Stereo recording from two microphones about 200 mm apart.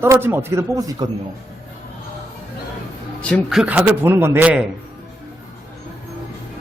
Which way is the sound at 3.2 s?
5° left (ahead or behind).